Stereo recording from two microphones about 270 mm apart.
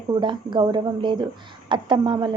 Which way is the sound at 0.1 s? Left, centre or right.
Centre.